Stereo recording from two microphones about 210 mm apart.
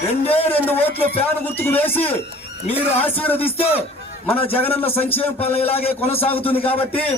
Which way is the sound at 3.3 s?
25° left (ahead or behind).